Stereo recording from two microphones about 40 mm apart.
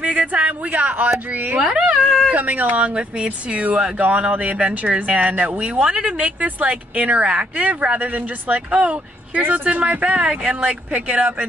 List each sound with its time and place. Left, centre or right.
0.0 s speech: right
1.6 s speech: right
2.3 s speech: right
6.1 s speech: right